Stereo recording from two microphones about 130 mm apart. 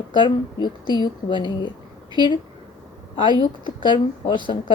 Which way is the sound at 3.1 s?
35° left (ahead or behind).